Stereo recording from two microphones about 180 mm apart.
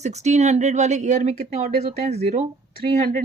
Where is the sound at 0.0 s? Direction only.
40° right (ahead or behind).